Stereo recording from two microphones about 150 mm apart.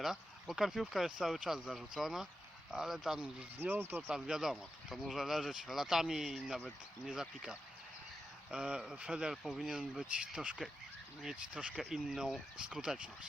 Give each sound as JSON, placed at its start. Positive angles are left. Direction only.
{"t": 0.0, "sound": "speech", "side_deg": 0}
{"t": 3.6, "sound": "speech", "side_deg": -15}
{"t": 4.1, "sound": "speech", "side_deg": -5}